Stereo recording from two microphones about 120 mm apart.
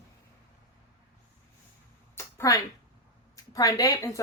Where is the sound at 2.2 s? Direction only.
25° left (ahead or behind).